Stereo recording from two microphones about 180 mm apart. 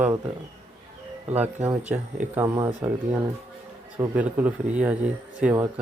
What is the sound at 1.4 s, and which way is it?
Speech, 10° right (ahead or behind).